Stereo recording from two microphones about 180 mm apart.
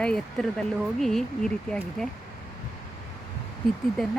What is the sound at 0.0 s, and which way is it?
Speech, 5° left (ahead or behind).